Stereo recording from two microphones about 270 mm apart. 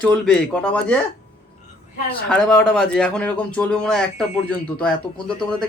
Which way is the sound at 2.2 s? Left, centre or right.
Centre.